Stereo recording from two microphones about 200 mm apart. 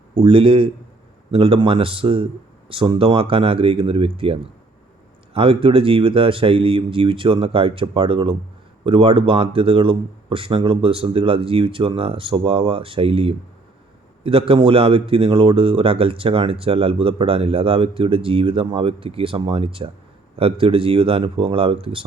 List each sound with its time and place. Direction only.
0.2 s speech: 25° right (ahead or behind)